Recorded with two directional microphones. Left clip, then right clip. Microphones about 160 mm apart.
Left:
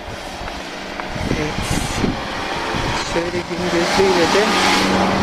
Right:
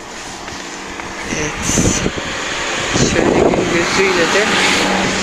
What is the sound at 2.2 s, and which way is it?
Vehicle, 75° left (ahead or behind).